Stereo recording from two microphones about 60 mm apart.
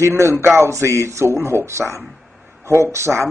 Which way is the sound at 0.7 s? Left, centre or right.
Right.